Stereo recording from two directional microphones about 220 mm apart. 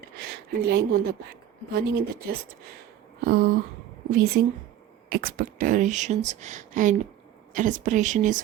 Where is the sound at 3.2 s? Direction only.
45° right (ahead or behind).